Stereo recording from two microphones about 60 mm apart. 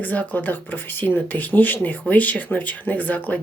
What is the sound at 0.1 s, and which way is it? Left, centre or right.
Speech, left.